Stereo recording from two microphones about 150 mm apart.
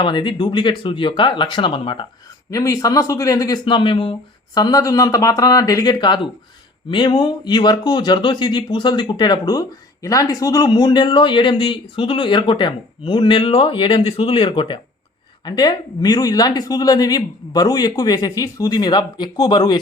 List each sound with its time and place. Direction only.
0.0 s speech: 30° left (ahead or behind)
2.5 s speech: 20° left (ahead or behind)